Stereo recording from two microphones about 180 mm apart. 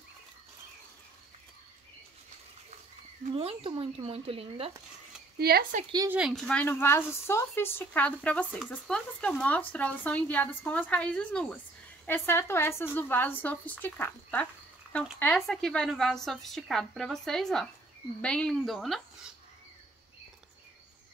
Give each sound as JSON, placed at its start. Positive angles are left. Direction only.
{"t": 3.3, "sound": "speech", "side_deg": -30}
{"t": 5.4, "sound": "speech", "side_deg": -55}
{"t": 6.0, "sound": "speech", "side_deg": -5}